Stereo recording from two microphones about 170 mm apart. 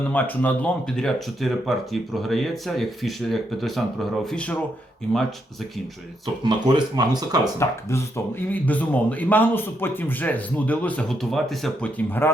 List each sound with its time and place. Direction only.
0.1 s speech: 10° left (ahead or behind)
6.4 s speech: 25° right (ahead or behind)
7.6 s speech: 15° left (ahead or behind)